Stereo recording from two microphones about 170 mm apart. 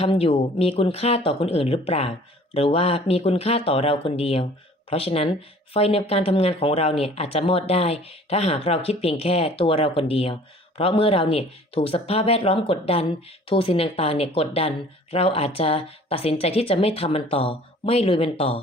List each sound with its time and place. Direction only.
0.0 s speech: 35° left (ahead or behind)